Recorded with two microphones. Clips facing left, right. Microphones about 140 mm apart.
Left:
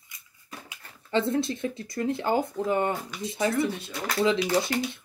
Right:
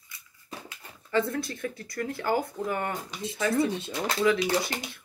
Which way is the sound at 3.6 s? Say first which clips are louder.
Right 1 dB; 25° right (ahead or behind).